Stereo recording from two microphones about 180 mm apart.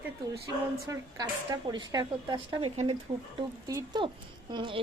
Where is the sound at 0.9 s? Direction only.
20° right (ahead or behind).